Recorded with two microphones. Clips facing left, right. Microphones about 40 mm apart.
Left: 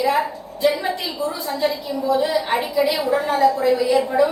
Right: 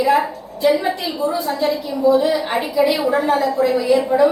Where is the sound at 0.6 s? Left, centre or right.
Centre.